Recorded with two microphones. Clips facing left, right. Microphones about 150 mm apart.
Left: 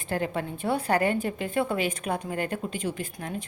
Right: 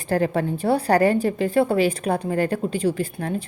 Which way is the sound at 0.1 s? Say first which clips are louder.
Right 8 dB; 40° right (ahead or behind).